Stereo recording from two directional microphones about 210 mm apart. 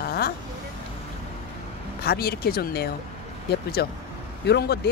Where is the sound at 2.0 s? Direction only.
45° left (ahead or behind).